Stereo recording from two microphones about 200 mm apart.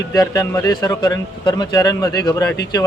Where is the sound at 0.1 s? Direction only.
15° left (ahead or behind).